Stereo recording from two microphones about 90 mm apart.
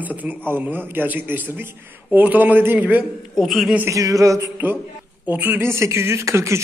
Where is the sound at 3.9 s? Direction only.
40° right (ahead or behind).